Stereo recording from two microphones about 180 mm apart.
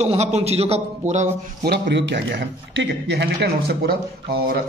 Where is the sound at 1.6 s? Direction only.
70° right (ahead or behind).